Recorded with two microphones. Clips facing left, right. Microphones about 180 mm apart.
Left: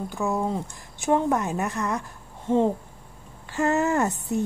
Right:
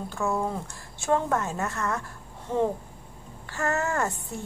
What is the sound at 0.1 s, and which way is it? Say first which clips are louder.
A woman's voice: left 1 dB; 15° left (ahead or behind).